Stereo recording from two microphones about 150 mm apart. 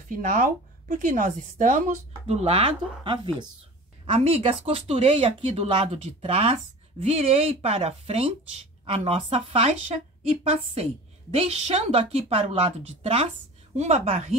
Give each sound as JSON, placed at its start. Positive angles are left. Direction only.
{"t": 0.2, "sound": "a woman's voice", "side_deg": -60}